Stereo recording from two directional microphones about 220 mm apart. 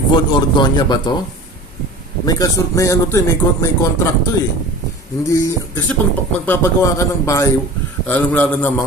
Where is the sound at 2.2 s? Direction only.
15° left (ahead or behind).